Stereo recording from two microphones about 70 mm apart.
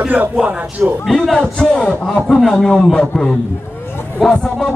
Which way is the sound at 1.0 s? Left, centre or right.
Centre.